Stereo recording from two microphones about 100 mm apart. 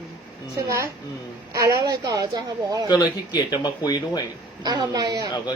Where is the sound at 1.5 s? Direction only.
35° right (ahead or behind).